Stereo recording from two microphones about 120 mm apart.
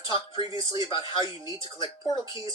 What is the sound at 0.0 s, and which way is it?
Speech, 45° left (ahead or behind).